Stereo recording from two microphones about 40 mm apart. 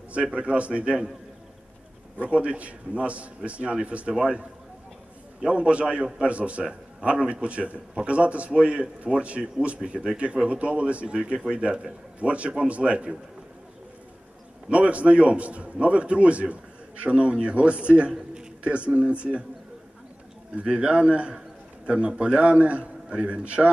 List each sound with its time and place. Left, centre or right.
0.1 s a man's voice: right
2.1 s a man's voice: right
14.7 s a man's voice: right
18.1 s a sound: centre
18.6 s a man's voice: right
20.7 s a man's voice: right